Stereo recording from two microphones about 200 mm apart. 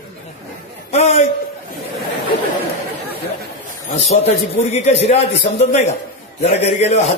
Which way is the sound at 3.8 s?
35° left (ahead or behind).